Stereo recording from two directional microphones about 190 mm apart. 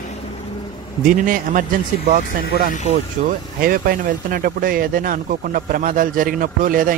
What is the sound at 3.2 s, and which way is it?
Speech, 40° right (ahead or behind).